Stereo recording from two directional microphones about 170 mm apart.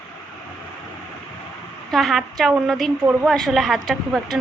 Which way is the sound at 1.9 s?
Centre (ahead or behind).